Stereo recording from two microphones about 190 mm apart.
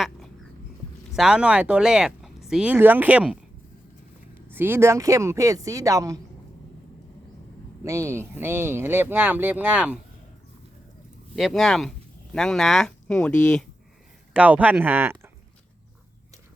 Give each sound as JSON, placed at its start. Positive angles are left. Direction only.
{"t": 1.1, "sound": "speech", "side_deg": -5}
{"t": 4.5, "sound": "speech", "side_deg": -10}
{"t": 7.9, "sound": "speech", "side_deg": -15}
{"t": 11.3, "sound": "speech", "side_deg": 0}
{"t": 14.3, "sound": "speech", "side_deg": -5}